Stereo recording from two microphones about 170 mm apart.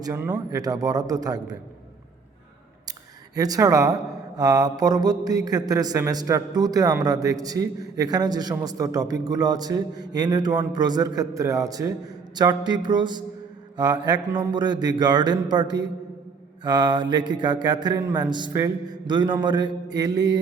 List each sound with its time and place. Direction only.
0.0 s a man's voice: 15° right (ahead or behind)
3.3 s a man's voice: 20° right (ahead or behind)